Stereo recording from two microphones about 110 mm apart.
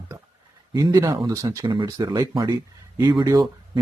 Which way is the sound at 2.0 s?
35° right (ahead or behind).